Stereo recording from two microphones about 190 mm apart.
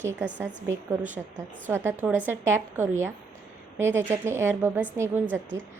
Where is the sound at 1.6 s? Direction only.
10° right (ahead or behind).